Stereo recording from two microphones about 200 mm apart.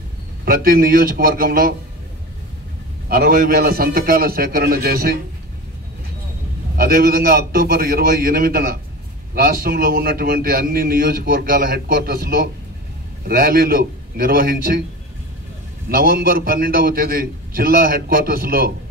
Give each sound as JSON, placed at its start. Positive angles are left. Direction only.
{"t": 0.5, "sound": "a man's voice", "side_deg": -45}
{"t": 3.1, "sound": "a man's voice", "side_deg": -45}
{"t": 6.8, "sound": "a man's voice", "side_deg": -45}
{"t": 15.9, "sound": "a man's voice", "side_deg": -45}